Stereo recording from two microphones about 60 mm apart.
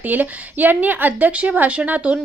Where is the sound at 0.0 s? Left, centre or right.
Right.